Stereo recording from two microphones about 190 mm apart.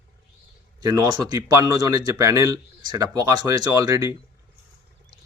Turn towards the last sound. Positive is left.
turn(degrees=-15)  # may be behind; listen again after turning